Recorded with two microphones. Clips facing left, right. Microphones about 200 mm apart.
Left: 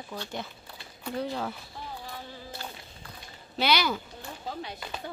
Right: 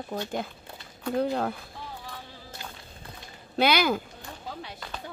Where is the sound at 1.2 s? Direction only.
55° right (ahead or behind).